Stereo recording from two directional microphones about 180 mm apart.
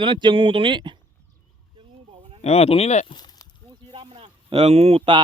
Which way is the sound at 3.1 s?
20° left (ahead or behind).